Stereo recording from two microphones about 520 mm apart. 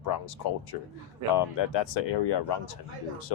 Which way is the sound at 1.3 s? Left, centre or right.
Left.